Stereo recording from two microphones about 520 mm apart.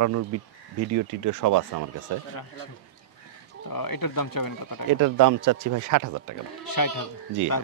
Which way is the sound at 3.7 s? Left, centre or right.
Left.